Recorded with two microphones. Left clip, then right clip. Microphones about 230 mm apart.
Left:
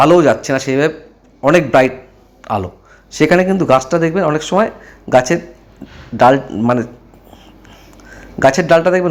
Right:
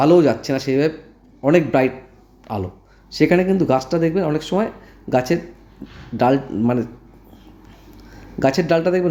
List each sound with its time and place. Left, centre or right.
0.0 s speech: centre
2.4 s a sound: centre
3.1 s a man's voice: centre
8.1 s a man's voice: centre